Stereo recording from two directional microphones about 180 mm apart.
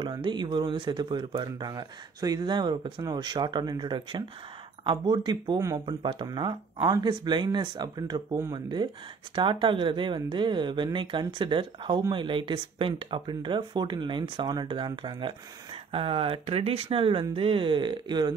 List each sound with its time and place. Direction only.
0.0 s speech: 25° right (ahead or behind)